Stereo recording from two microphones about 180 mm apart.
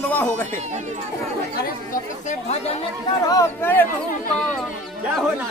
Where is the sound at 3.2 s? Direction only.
15° left (ahead or behind).